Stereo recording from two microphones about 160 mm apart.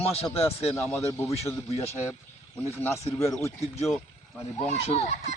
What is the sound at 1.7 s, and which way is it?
Speech, 40° left (ahead or behind).